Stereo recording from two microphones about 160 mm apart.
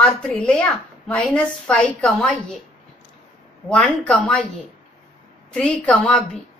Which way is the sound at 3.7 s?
5° left (ahead or behind).